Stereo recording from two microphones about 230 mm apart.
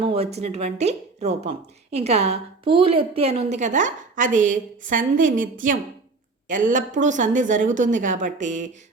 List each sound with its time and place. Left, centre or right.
0.0 s speech: right
6.5 s a woman's voice: right